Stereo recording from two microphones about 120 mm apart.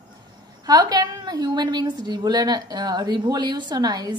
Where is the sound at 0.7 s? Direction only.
35° right (ahead or behind).